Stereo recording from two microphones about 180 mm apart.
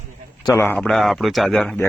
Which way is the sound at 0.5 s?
10° left (ahead or behind).